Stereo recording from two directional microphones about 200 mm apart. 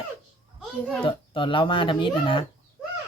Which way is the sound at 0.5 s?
5° left (ahead or behind).